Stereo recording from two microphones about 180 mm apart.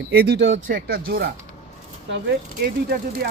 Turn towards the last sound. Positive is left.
turn(degrees=-55)  # may be behind; listen again after turning